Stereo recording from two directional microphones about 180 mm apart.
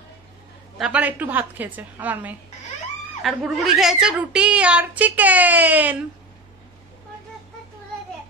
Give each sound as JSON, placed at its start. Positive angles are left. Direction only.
{"t": 0.7, "sound": "speech", "side_deg": -5}